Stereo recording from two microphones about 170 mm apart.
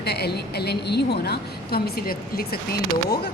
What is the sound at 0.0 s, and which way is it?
Speech, 70° left (ahead or behind).